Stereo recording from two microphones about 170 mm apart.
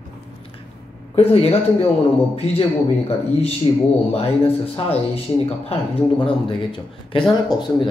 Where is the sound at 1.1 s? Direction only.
35° left (ahead or behind).